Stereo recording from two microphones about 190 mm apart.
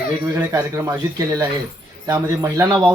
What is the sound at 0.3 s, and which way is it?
Speech, 15° right (ahead or behind).